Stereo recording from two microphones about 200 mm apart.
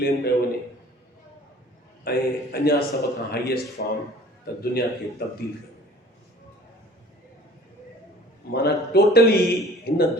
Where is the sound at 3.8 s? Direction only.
55° left (ahead or behind).